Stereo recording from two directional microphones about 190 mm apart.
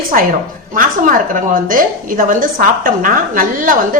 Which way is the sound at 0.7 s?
45° right (ahead or behind).